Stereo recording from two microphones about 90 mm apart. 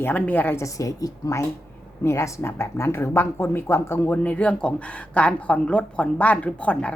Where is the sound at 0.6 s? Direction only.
40° left (ahead or behind).